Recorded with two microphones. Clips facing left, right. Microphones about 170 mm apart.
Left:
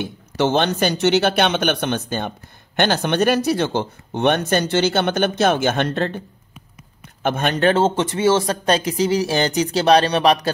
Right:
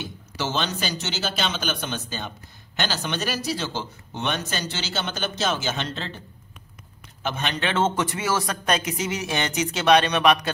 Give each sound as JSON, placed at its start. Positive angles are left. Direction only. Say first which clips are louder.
{"t": 0.0, "sound": "speech", "louder": "left 10 dB", "side_deg": 55}
{"t": 7.2, "sound": "speech", "louder": "left 9 dB", "side_deg": 50}